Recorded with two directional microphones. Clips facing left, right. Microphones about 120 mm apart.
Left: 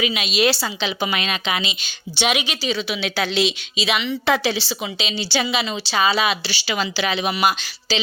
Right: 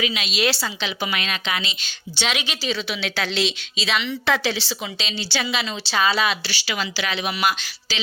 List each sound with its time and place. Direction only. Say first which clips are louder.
0.0 s a woman's voice: left 4 dB; 15° left (ahead or behind)